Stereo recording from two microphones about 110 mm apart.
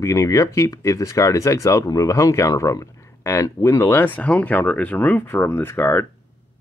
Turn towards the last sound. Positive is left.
turn(degrees=20)  # may be behind; listen again after turning